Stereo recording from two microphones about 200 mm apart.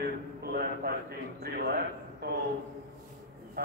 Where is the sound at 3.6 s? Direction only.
50° right (ahead or behind).